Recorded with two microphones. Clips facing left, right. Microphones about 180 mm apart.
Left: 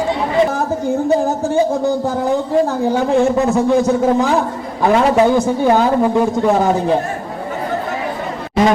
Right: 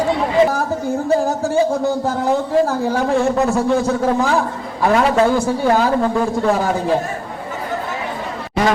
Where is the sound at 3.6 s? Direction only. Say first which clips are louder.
Left 3 dB; 20° left (ahead or behind).